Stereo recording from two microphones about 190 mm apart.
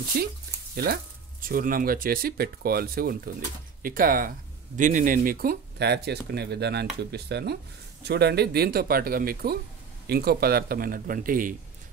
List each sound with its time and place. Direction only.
0.1 s speech: 55° right (ahead or behind)